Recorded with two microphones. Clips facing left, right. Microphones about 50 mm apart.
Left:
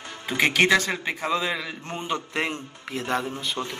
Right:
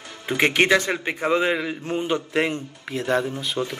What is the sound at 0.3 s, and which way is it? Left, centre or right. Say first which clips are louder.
A man's voice: right 2 dB; right.